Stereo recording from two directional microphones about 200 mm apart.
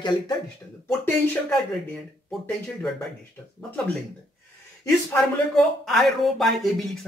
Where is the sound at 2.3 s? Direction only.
5° left (ahead or behind).